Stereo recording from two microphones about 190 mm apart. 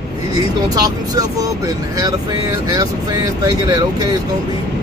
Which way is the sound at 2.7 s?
20° right (ahead or behind).